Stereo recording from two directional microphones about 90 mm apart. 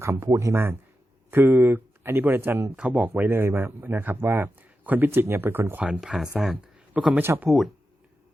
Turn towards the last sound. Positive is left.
turn(degrees=0)  # may be behind; listen again after turning